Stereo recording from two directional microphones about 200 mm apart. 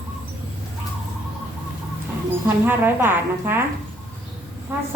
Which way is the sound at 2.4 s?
10° right (ahead or behind).